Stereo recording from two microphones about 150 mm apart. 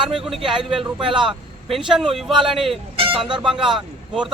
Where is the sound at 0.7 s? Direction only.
35° right (ahead or behind).